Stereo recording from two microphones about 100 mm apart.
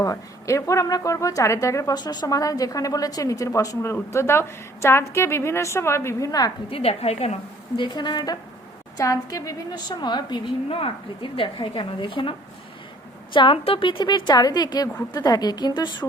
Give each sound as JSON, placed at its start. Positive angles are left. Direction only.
{"t": 0.0, "sound": "a woman's voice", "side_deg": 35}
{"t": 2.0, "sound": "a woman's voice", "side_deg": 45}
{"t": 6.7, "sound": "a woman's voice", "side_deg": 75}
{"t": 7.8, "sound": "a woman's voice", "side_deg": 45}
{"t": 9.0, "sound": "a woman's voice", "side_deg": 35}
{"t": 9.7, "sound": "a woman's voice", "side_deg": 45}
{"t": 10.7, "sound": "a woman's voice", "side_deg": 65}